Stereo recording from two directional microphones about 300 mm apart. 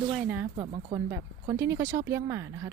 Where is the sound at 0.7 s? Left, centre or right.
Centre.